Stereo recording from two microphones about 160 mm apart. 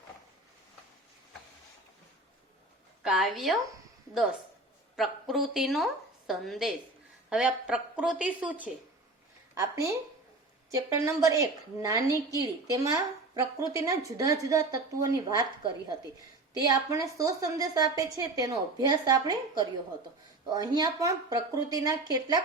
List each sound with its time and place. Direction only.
3.0 s a woman's voice: 5° right (ahead or behind)
9.6 s a woman's voice: 20° right (ahead or behind)
13.4 s a woman's voice: 20° right (ahead or behind)